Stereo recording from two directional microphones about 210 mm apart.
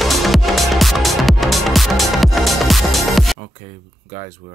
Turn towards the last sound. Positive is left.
turn(degrees=0)  # may be behind; listen again after turning